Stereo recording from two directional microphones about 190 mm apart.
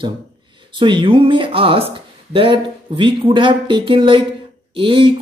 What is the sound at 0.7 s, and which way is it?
Speech, 25° right (ahead or behind).